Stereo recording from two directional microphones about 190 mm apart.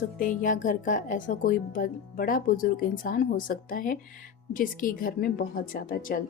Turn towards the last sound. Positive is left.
turn(degrees=45)  # may be behind; listen again after turning